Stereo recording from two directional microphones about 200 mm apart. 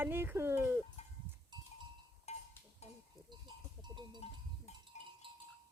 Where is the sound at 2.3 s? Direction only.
30° left (ahead or behind).